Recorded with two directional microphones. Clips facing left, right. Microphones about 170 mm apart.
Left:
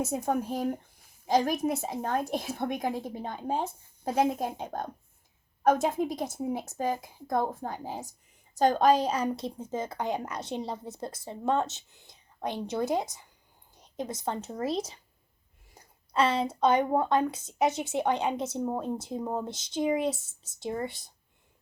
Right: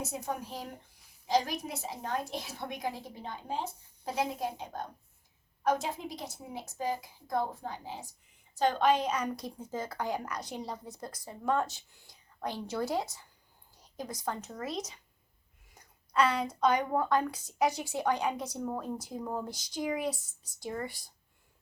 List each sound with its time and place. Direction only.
0.0 s a woman's voice: 50° left (ahead or behind); by 21.1 s 25° left (ahead or behind)